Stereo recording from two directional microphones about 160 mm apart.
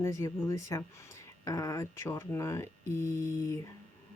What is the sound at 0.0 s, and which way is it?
Speech, 15° left (ahead or behind).